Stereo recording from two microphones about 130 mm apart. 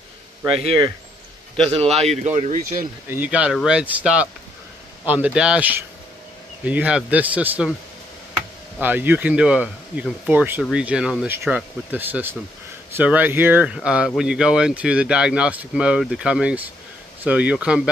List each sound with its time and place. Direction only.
0.6 s speech: 50° right (ahead or behind)
1.9 s speech: centre (ahead or behind)
2.2 s speech: 65° right (ahead or behind)
3.1 s speech: 10° right (ahead or behind)
8.7 s speech: 15° right (ahead or behind)